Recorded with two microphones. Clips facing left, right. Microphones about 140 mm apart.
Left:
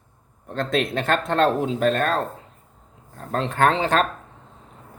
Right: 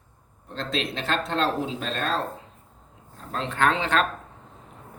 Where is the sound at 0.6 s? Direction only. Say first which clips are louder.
Left 6 dB; 50° left (ahead or behind).